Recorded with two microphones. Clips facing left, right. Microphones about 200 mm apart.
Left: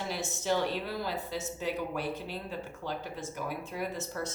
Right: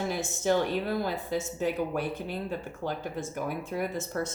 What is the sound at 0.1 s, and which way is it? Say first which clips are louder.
Speech: right 3 dB; 50° right (ahead or behind).